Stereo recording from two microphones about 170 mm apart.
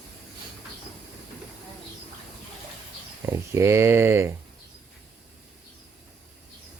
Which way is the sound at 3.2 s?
15° right (ahead or behind).